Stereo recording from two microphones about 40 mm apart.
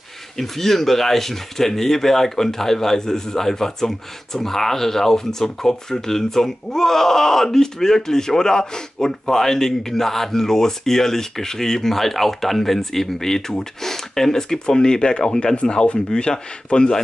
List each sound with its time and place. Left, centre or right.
0.4 s speech: centre